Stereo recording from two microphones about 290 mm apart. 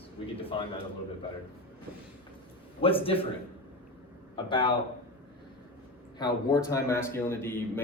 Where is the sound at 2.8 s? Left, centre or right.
Centre.